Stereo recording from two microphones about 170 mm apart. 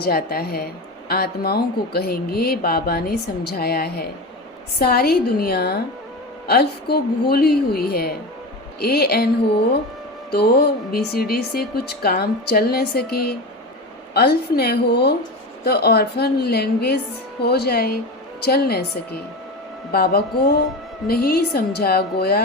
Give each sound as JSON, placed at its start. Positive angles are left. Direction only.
{"t": 0.0, "sound": "a woman's voice", "side_deg": 65}
{"t": 10.3, "sound": "a woman's voice", "side_deg": 70}